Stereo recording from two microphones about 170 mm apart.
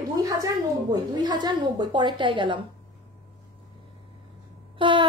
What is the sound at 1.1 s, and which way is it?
Speech, 25° right (ahead or behind).